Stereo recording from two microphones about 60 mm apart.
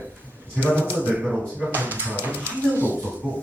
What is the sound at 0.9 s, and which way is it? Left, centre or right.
Speech, right.